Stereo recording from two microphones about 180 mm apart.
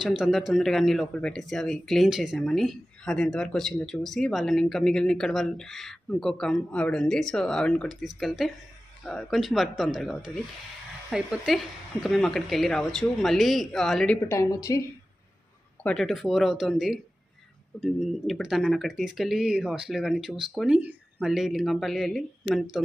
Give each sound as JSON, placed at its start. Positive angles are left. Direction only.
{"t": 0.0, "sound": "speech", "side_deg": 0}
{"t": 14.2, "sound": "speech", "side_deg": 15}
{"t": 15.8, "sound": "speech", "side_deg": 5}